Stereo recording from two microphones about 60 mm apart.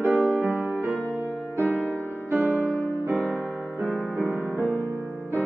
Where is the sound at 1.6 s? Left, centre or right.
Left.